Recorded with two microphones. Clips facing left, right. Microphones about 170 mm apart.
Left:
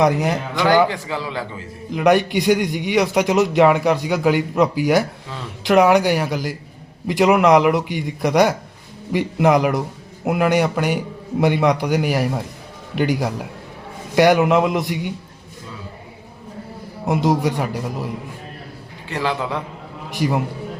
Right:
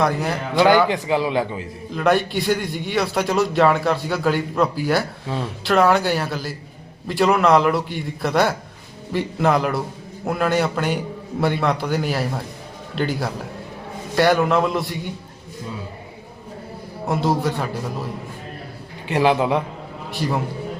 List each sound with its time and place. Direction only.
0.0 s a man's voice: 15° left (ahead or behind)
0.9 s a man's voice: 20° right (ahead or behind)
1.9 s a man's voice: 15° left (ahead or behind)
17.1 s a man's voice: 15° left (ahead or behind)
19.0 s a man's voice: 20° right (ahead or behind)
20.1 s a man's voice: 15° left (ahead or behind)